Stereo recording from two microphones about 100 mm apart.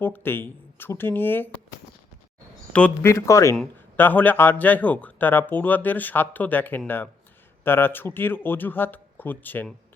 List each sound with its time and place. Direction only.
0.0 s speech: 20° left (ahead or behind)
3.0 s speech: 25° left (ahead or behind)
3.9 s speech: 20° left (ahead or behind)